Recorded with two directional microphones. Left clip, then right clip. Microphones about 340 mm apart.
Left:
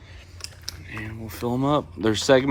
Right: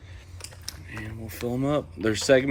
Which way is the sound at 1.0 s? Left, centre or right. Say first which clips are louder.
Left 3 dB; centre.